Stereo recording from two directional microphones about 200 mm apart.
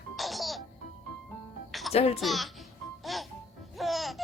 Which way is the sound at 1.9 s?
30° left (ahead or behind).